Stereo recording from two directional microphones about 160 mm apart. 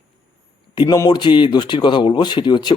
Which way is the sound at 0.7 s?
25° left (ahead or behind).